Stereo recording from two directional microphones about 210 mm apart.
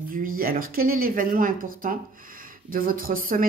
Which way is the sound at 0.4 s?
45° right (ahead or behind).